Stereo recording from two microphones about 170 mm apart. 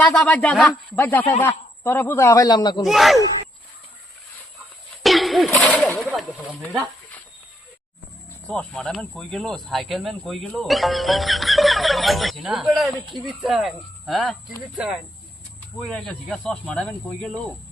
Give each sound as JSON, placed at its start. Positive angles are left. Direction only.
{"t": 0.0, "sound": "a man's voice", "side_deg": 5}
{"t": 2.8, "sound": "speech", "side_deg": 0}
{"t": 5.0, "sound": "a sound", "side_deg": 0}
{"t": 5.5, "sound": "speech", "side_deg": 5}
{"t": 8.4, "sound": "speech", "side_deg": 5}